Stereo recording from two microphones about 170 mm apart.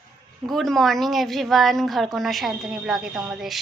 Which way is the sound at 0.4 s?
Centre (ahead or behind).